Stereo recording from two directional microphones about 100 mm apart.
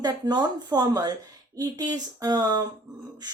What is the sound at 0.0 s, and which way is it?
A woman's voice, 45° right (ahead or behind).